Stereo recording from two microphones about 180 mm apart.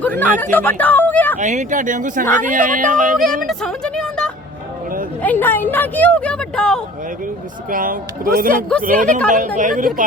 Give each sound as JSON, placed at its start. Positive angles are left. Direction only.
{"t": 0.0, "sound": "speech", "side_deg": 10}
{"t": 0.5, "sound": "a sound", "side_deg": 10}
{"t": 1.4, "sound": "speech", "side_deg": -40}
{"t": 3.2, "sound": "a sound", "side_deg": 0}
{"t": 5.2, "sound": "speech", "side_deg": 10}
{"t": 7.7, "sound": "speech", "side_deg": -50}